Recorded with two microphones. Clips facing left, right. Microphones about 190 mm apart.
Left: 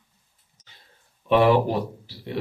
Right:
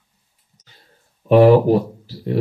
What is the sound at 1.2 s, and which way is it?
Speech, 40° right (ahead or behind).